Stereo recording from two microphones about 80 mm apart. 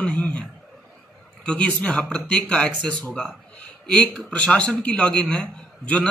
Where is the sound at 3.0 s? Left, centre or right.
Centre.